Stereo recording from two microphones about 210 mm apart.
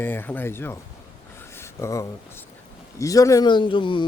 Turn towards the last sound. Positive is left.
turn(degrees=25)  # may be behind; listen again after turning